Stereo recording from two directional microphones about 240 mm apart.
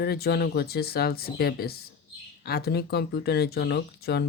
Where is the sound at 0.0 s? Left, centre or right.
Left.